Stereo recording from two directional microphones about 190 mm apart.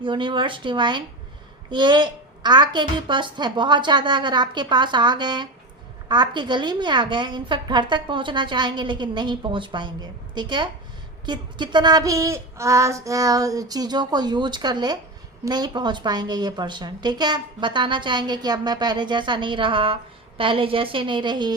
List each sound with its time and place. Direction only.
0.0 s a woman's voice: 25° right (ahead or behind)